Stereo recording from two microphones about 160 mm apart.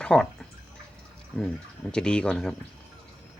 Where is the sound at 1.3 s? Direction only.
5° left (ahead or behind).